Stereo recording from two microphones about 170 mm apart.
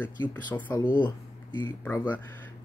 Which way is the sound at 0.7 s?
25° left (ahead or behind).